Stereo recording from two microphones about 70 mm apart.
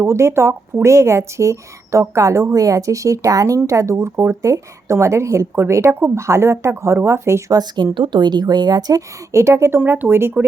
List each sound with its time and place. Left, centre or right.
0.0 s speech: right
7.5 s speech: right
8.1 s speech: right
9.0 s speech: right